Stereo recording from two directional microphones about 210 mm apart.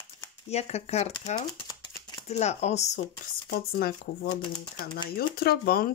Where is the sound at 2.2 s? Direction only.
30° left (ahead or behind).